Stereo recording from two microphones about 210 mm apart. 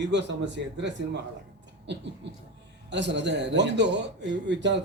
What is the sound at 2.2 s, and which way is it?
Speech, 55° right (ahead or behind).